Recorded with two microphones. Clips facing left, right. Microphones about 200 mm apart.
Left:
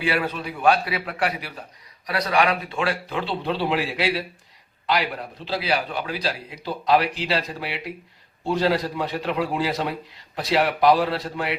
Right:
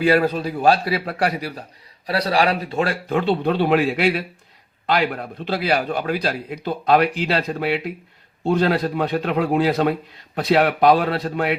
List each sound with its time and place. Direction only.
0.0 s a man's voice: 40° right (ahead or behind); by 11.5 s 55° right (ahead or behind)